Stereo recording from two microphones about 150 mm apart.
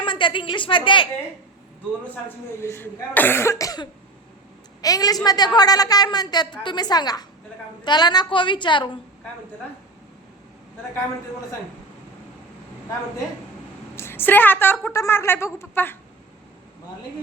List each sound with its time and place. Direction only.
0.0 s a woman's voice: 35° left (ahead or behind)
2.6 s a woman's voice: 15° left (ahead or behind); by 9.0 s 30° left (ahead or behind)
13.9 s a woman's voice: 15° left (ahead or behind)